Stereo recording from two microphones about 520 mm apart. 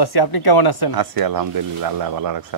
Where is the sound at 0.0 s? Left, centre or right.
Left.